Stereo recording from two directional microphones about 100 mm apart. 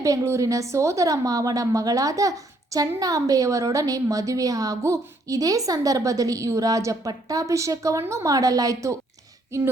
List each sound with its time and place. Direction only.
0.0 s a woman's voice: 35° right (ahead or behind)